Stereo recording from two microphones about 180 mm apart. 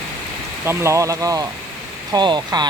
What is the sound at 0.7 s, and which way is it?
Speech, 15° right (ahead or behind).